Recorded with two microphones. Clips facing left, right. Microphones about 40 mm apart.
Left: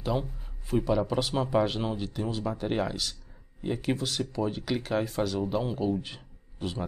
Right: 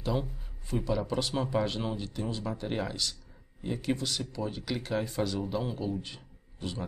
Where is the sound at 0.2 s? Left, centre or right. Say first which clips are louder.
Even; centre.